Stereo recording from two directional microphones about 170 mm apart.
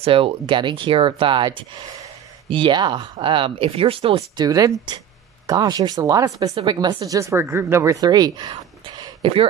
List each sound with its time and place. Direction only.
0.0 s speech: 30° right (ahead or behind)
4.4 s speech: 20° right (ahead or behind)